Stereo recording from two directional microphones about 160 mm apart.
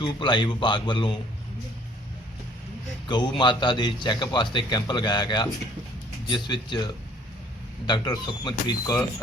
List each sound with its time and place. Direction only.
0.0 s a man's voice: 30° left (ahead or behind)
3.1 s a man's voice: 30° left (ahead or behind)